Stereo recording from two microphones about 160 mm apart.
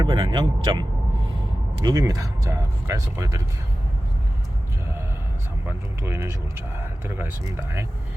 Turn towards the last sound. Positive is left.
turn(degrees=-15)  # may be behind; listen again after turning